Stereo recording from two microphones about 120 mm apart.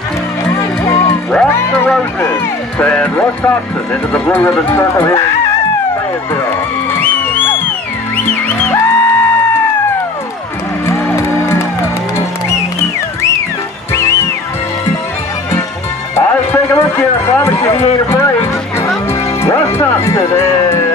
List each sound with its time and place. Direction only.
0.6 s music: 25° left (ahead or behind)
1.7 s music: 10° left (ahead or behind)
2.8 s speech: 15° left (ahead or behind)
8.5 s music: 20° left (ahead or behind)
11.1 s music: 20° left (ahead or behind)
13.9 s music: 25° left (ahead or behind)
16.2 s a sound: 20° left (ahead or behind)
19.4 s music: 25° left (ahead or behind)